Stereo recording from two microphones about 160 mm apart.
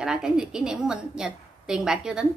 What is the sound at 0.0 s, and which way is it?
A woman's voice, 5° right (ahead or behind).